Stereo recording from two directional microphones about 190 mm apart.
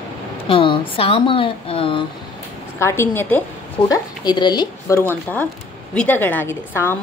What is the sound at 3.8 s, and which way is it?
A woman's voice, 20° left (ahead or behind).